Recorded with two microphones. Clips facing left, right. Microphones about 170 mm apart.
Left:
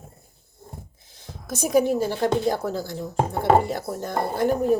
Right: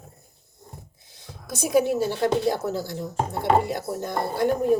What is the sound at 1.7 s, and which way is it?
Speech, 45° left (ahead or behind).